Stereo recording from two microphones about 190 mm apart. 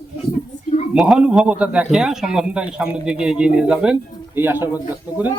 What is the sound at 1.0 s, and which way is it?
A man's voice, 5° right (ahead or behind).